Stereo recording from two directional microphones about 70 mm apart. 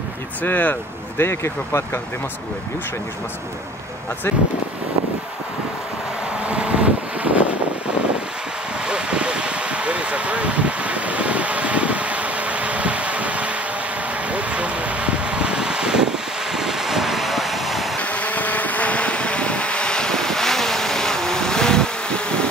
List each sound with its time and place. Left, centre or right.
0.4 s speech: left
1.2 s speech: left
6.5 s vehicle: centre
8.8 s vehicle: centre
18.0 s vehicle: left